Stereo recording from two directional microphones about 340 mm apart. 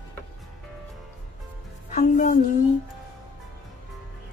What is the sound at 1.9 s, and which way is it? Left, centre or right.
Music, left.